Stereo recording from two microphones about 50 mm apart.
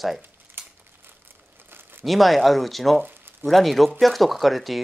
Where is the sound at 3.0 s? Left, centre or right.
Right.